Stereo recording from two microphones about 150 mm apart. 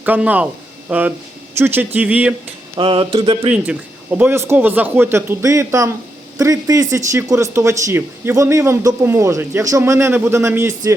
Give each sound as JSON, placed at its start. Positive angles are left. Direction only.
{"t": 0.0, "sound": "speech", "side_deg": -10}
{"t": 2.7, "sound": "a sound", "side_deg": -35}
{"t": 3.5, "sound": "speech", "side_deg": -10}